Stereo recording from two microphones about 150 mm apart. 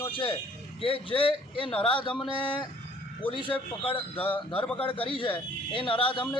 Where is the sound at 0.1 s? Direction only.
35° left (ahead or behind).